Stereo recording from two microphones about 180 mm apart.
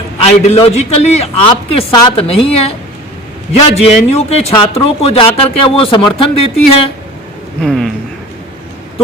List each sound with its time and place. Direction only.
0.5 s a man's voice: 35° left (ahead or behind)
7.6 s speech: centre (ahead or behind)